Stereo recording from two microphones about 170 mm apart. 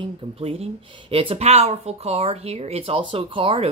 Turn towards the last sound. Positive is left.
turn(degrees=-30)  # may be behind; listen again after turning